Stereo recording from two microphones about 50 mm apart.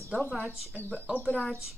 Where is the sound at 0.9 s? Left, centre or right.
Right.